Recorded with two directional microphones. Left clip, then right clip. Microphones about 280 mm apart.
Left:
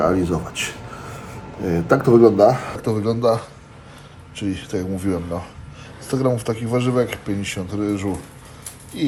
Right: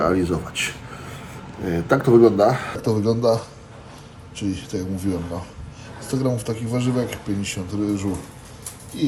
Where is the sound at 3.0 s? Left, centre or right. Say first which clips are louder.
Left 1 dB; centre.